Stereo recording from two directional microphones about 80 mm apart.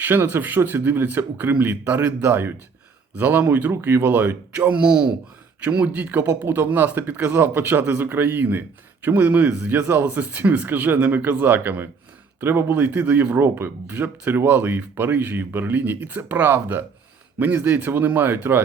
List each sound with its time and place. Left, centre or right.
0.0 s speech: right